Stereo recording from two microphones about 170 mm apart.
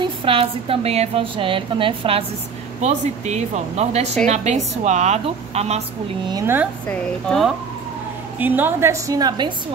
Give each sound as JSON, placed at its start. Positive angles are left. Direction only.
{"t": 0.0, "sound": "a woman's voice", "side_deg": -30}
{"t": 6.2, "sound": "a woman's voice", "side_deg": -20}
{"t": 6.9, "sound": "a woman's voice", "side_deg": 5}
{"t": 8.4, "sound": "a woman's voice", "side_deg": -10}